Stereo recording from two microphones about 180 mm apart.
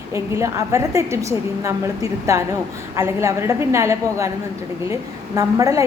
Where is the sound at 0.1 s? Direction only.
15° right (ahead or behind).